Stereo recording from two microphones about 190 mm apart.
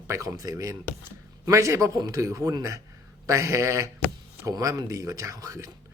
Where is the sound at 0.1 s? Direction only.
20° right (ahead or behind).